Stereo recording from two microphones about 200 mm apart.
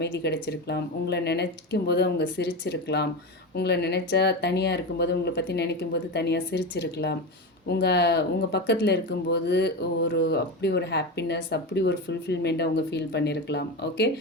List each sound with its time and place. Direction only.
0.0 s speech: 55° left (ahead or behind)